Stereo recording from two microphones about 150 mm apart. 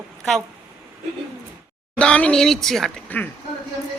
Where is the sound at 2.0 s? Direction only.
10° left (ahead or behind).